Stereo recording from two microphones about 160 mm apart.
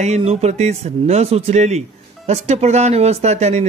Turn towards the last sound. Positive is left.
turn(degrees=-45)  # may be behind; listen again after turning